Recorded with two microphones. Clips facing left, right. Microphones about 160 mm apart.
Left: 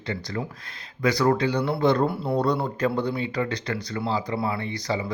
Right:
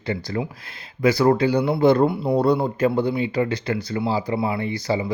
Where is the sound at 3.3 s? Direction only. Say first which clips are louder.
Right 5 dB; 25° right (ahead or behind).